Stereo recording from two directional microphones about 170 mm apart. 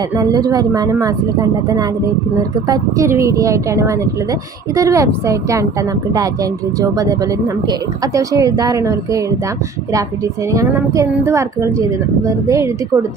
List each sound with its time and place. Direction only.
0.2 s a woman's voice: 20° right (ahead or behind)
10.5 s a woman's voice: 20° right (ahead or behind)